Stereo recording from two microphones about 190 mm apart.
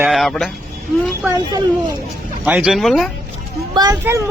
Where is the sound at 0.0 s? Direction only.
Centre (ahead or behind).